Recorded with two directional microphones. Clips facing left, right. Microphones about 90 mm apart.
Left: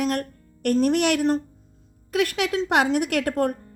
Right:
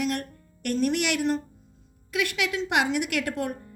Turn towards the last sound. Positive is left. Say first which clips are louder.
# left 6 dB
turn(degrees=45)  # may be behind; listen again after turning